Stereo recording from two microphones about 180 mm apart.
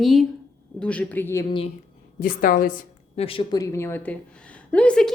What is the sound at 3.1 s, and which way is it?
A woman's voice, 30° left (ahead or behind).